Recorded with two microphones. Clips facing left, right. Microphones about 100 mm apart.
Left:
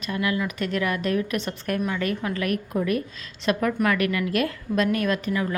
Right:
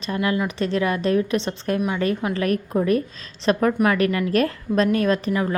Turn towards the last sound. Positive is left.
turn(degrees=-30)  # may be behind; listen again after turning